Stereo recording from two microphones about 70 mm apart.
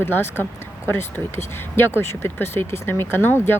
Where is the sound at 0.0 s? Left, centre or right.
Left.